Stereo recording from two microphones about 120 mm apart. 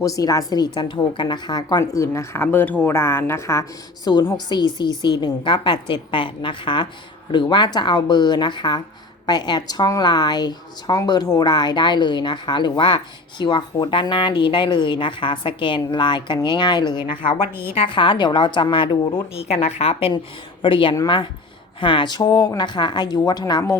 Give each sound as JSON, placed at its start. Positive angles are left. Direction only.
{"t": 0.0, "sound": "speech", "side_deg": 30}
{"t": 1.8, "sound": "a woman's voice", "side_deg": 25}